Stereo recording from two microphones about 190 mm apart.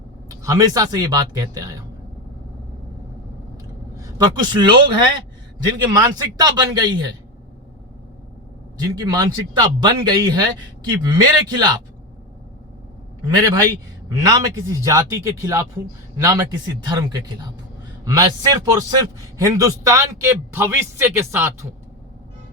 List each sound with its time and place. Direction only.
0.3 s a man's voice: 20° right (ahead or behind)
3.9 s a man's voice: 20° right (ahead or behind)
5.7 s a man's voice: 20° right (ahead or behind)
9.0 s a man's voice: 20° right (ahead or behind)
13.3 s a man's voice: 20° right (ahead or behind)